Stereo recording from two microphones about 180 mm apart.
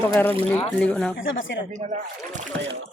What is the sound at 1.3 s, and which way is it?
Speech, 90° left.